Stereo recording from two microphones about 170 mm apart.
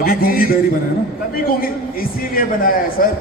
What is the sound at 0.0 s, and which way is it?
A man's voice, 60° left (ahead or behind).